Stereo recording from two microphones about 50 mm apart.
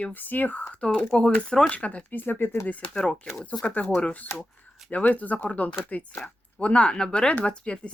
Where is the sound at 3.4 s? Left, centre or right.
Left.